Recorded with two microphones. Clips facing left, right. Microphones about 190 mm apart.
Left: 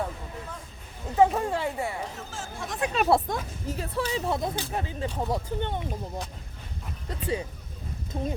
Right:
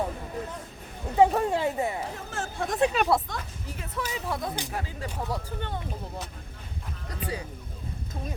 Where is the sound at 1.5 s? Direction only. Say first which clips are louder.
Right 2 dB; 20° right (ahead or behind).